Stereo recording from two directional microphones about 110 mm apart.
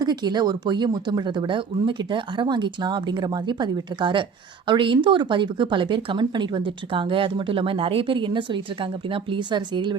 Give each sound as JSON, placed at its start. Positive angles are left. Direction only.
{"t": 0.0, "sound": "speech", "side_deg": -40}